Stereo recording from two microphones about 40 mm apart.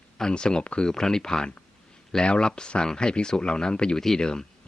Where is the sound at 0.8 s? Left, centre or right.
Centre.